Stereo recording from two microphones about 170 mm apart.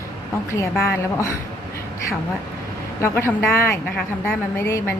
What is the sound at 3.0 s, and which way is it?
A woman's voice, 15° left (ahead or behind).